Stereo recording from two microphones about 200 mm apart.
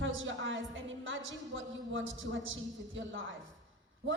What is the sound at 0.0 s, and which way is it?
A woman's voice, 75° right (ahead or behind).